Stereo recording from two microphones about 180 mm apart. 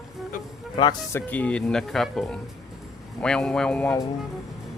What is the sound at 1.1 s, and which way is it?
Speech, 10° left (ahead or behind).